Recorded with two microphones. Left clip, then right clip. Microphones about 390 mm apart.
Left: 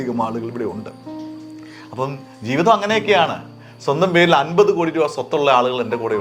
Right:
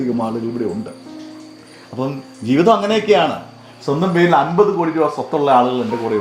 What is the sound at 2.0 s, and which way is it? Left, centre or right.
A man's voice, left.